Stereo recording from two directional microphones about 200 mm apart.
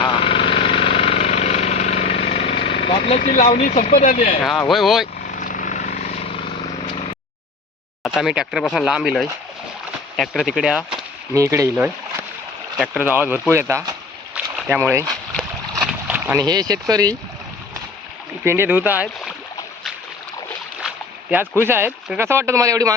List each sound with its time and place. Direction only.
0.0 s jackhammer: 25° left (ahead or behind)
4.7 s speech: centre (ahead or behind)
5.4 s vehicle: 40° left (ahead or behind)
8.0 s speech: centre (ahead or behind)
10.9 s speech: 15° right (ahead or behind)
12.7 s speech: 5° right (ahead or behind); by 17.2 s 20° right (ahead or behind)
18.4 s speech: 10° right (ahead or behind)
20.8 s boat: 5° right (ahead or behind)
21.6 s speech: 10° right (ahead or behind)